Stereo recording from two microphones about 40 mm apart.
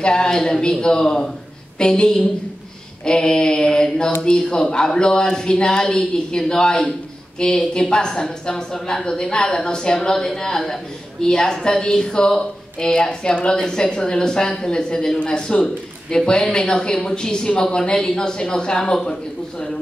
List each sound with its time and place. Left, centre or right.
0.0 s a woman's voice: centre